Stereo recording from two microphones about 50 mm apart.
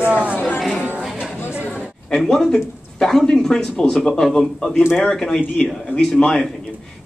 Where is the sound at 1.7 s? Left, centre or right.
Centre.